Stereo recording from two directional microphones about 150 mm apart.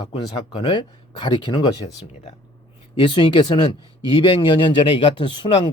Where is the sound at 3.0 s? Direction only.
35° left (ahead or behind).